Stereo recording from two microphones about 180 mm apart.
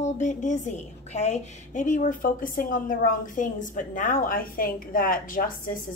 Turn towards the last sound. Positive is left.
turn(degrees=50)  # may be behind; listen again after turning